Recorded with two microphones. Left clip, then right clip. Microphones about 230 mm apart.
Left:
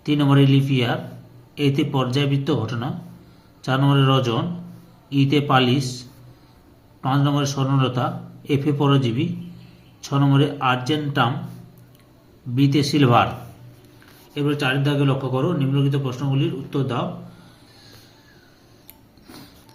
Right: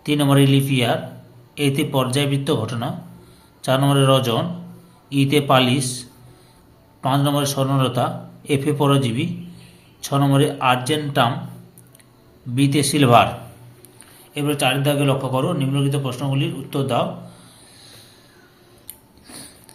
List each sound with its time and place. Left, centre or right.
0.0 s a man's voice: centre
12.5 s a man's voice: centre
14.3 s a man's voice: centre